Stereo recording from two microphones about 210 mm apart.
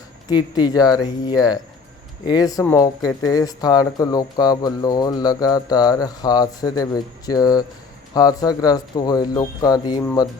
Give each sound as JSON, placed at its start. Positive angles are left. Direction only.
{"t": 0.3, "sound": "speech", "side_deg": 20}